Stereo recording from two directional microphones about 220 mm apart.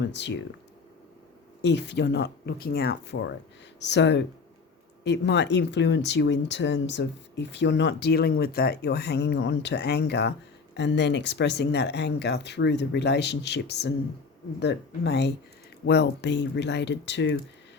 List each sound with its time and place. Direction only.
0.0 s speech: 50° left (ahead or behind)
1.6 s speech: 50° left (ahead or behind)